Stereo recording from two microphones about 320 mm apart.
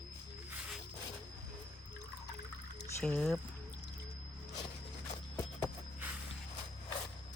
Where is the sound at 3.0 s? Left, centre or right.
Centre.